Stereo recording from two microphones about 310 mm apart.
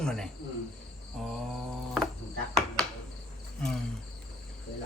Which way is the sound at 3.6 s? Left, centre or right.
Centre.